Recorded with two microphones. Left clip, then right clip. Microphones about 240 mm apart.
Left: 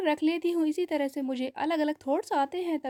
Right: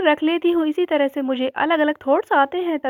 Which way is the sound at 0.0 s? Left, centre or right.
Centre.